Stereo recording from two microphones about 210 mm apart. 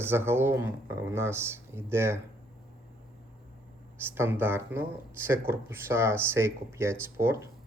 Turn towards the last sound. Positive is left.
turn(degrees=-10)  # may be behind; listen again after turning